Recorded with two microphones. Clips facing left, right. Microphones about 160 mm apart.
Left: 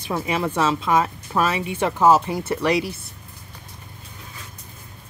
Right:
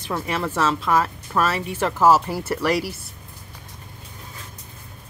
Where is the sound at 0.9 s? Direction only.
20° left (ahead or behind).